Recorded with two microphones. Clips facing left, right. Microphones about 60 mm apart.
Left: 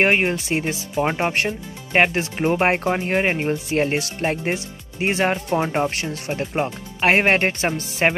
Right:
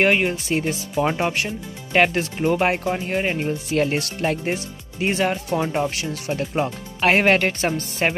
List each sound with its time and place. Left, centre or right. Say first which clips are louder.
0.0 s speech: even; left
2.3 s speech: left 1 dB; left
3.7 s speech: right 2 dB; left